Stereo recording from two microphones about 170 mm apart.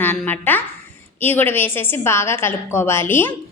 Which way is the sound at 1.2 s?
10° left (ahead or behind).